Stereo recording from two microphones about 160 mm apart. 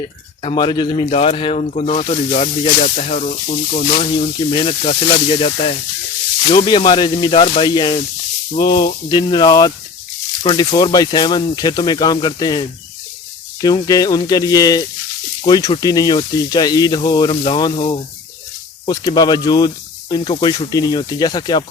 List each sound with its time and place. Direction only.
0.4 s speech: 30° left (ahead or behind)
18.9 s speech: 25° left (ahead or behind)